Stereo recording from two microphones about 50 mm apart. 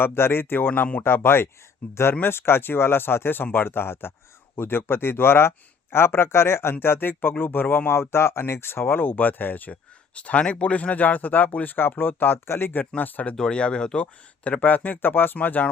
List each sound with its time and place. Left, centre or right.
0.0 s speech: left
1.8 s speech: left
2.2 s speech: left
8.1 s speech: left
10.2 s speech: left
13.3 s speech: centre; by 15.7 s left